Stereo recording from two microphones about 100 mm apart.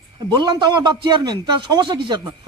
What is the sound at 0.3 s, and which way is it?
A man's voice, 50° right (ahead or behind).